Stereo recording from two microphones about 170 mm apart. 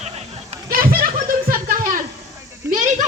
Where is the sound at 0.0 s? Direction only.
40° right (ahead or behind).